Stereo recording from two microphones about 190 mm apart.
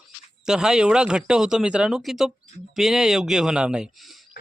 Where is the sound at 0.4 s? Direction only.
5° right (ahead or behind).